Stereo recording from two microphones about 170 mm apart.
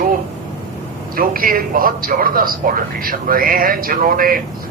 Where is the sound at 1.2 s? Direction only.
55° right (ahead or behind).